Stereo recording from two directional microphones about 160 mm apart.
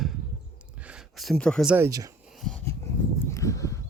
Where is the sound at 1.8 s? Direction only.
20° right (ahead or behind).